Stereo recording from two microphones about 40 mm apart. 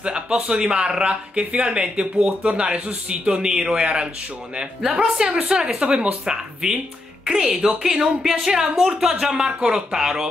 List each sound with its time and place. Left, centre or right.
0.0 s a man's voice: right
6.3 s speech: centre
8.7 s speech: centre